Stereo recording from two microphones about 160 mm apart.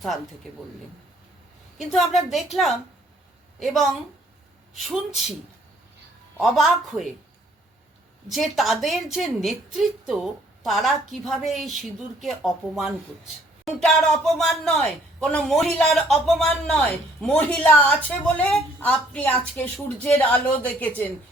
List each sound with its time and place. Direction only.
1.8 s a woman's voice: centre (ahead or behind)
6.4 s a woman's voice: centre (ahead or behind)
8.3 s a woman's voice: centre (ahead or behind)